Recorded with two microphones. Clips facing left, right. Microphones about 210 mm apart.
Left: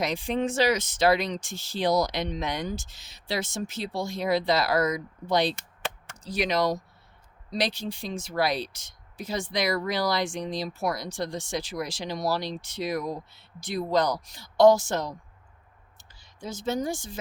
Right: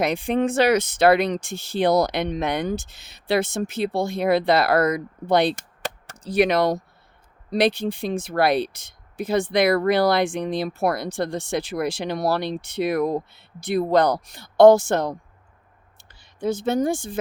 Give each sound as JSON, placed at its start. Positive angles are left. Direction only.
{"t": 0.0, "sound": "speech", "side_deg": -55}